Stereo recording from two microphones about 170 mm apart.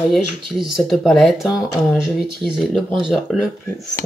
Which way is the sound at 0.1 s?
Centre (ahead or behind).